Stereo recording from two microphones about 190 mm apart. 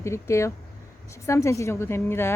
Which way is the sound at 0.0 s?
15° left (ahead or behind).